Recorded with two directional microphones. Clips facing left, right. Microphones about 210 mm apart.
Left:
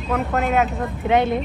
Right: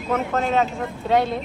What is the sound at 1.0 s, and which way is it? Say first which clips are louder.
Speech: left 2 dB; 20° left (ahead or behind).